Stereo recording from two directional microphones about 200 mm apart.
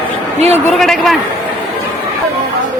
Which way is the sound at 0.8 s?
Centre (ahead or behind).